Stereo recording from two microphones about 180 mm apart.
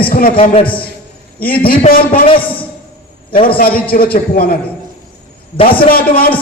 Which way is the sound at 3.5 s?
55° left (ahead or behind).